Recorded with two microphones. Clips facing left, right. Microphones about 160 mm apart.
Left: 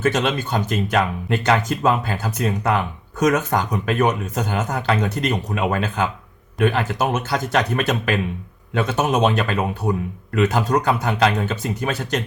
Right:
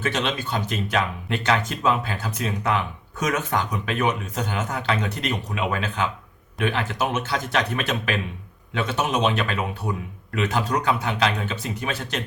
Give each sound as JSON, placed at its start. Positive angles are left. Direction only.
{"t": 0.0, "sound": "speech", "side_deg": 45}